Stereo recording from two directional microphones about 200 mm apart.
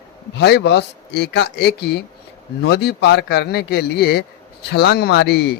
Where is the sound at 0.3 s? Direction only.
55° left (ahead or behind).